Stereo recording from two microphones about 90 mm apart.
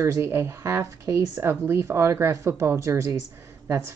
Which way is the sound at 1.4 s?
30° right (ahead or behind).